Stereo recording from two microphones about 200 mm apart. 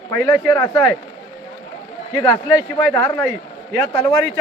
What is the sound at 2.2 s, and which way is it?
A man's voice, 15° left (ahead or behind).